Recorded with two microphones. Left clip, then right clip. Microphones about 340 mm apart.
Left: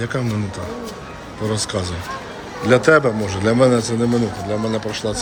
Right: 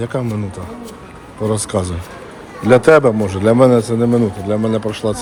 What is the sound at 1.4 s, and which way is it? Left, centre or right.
A man's voice, centre.